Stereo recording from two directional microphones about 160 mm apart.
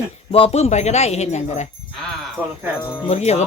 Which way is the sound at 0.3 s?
35° left (ahead or behind).